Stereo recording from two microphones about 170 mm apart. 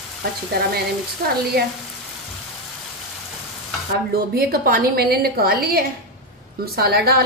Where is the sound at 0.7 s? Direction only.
65° right (ahead or behind).